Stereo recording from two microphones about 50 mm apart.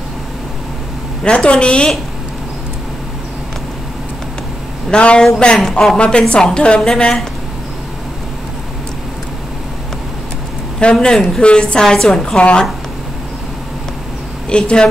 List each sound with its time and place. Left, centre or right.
1.2 s a woman's voice: left
4.9 s a woman's voice: left
10.8 s a woman's voice: centre
14.5 s a woman's voice: centre